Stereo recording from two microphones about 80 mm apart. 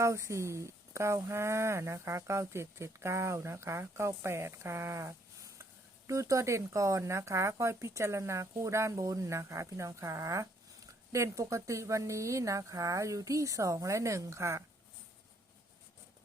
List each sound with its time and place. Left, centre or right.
0.0 s speech: right